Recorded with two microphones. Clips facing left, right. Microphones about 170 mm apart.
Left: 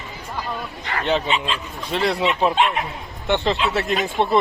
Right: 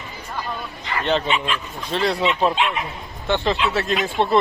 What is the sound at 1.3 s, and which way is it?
Speech, 25° left (ahead or behind).